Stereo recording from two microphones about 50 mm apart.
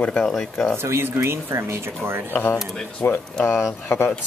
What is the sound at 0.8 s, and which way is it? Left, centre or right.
Speech, right.